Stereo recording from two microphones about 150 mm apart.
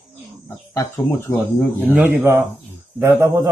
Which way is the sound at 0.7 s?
20° left (ahead or behind).